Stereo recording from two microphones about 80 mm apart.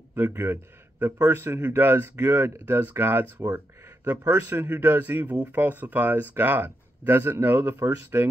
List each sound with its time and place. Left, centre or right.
0.1 s speech: right